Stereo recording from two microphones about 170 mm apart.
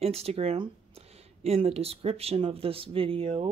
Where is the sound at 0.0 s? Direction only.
35° right (ahead or behind).